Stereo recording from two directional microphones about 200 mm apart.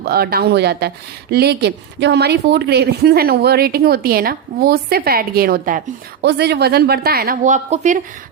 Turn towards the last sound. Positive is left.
turn(degrees=-40)  # may be behind; listen again after turning